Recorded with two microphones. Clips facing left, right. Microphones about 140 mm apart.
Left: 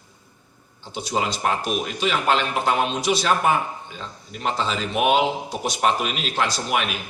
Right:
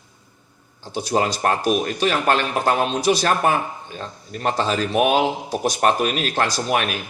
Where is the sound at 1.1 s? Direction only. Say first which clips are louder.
Right 3 dB; 50° right (ahead or behind).